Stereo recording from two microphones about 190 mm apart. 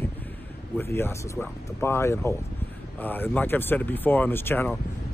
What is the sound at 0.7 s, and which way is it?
Speech, 10° left (ahead or behind).